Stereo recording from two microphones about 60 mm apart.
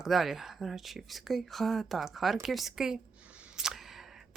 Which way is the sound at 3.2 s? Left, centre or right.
Centre.